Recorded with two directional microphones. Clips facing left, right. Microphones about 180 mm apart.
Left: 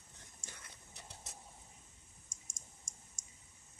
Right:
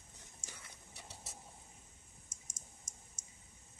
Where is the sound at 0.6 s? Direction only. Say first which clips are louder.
Right 1 dB; 5° right (ahead or behind).